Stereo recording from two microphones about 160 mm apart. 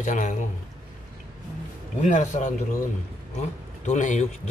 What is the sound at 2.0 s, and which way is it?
Speech, 50° left (ahead or behind).